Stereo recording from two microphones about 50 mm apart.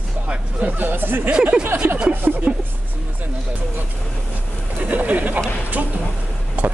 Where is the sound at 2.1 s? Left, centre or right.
Right.